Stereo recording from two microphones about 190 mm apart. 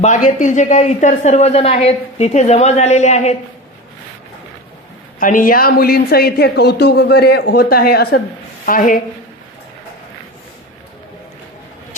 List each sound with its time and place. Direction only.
0.0 s speech: 45° left (ahead or behind)
5.2 s a woman's voice: 45° left (ahead or behind)